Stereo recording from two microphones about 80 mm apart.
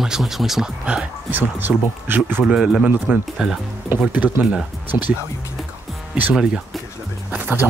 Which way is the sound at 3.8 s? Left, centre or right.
Right.